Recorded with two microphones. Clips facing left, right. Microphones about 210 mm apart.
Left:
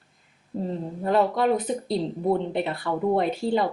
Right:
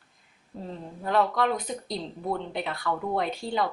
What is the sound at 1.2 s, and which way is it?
Speech, 30° left (ahead or behind).